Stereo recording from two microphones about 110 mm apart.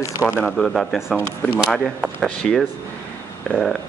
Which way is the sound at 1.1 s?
20° left (ahead or behind).